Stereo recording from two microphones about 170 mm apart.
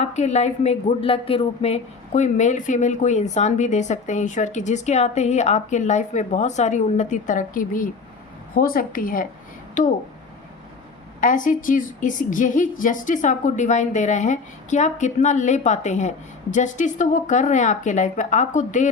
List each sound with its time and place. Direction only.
0.0 s a woman's voice: 45° left (ahead or behind)
11.2 s a woman's voice: 50° left (ahead or behind)